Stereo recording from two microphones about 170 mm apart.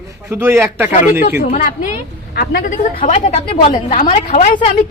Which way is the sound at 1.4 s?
50° left (ahead or behind).